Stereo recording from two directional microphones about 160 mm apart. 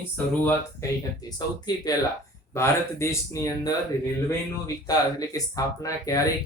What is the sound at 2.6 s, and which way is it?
Speech, 20° left (ahead or behind).